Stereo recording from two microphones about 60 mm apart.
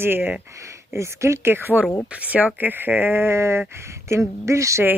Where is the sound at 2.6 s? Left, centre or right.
Right.